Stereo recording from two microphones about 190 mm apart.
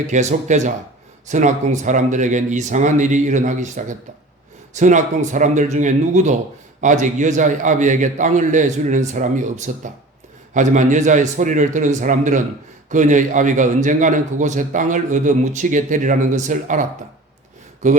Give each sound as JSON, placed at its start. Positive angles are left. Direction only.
{"t": 0.1, "sound": "a man's voice", "side_deg": -40}
{"t": 17.8, "sound": "a man's voice", "side_deg": -40}